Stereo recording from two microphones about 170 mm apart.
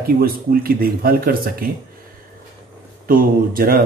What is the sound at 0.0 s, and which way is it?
Speech, 60° right (ahead or behind).